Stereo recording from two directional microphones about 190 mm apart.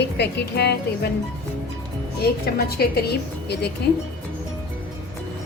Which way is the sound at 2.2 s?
55° left (ahead or behind).